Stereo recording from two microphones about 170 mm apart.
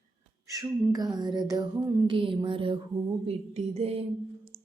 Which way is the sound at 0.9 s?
25° right (ahead or behind).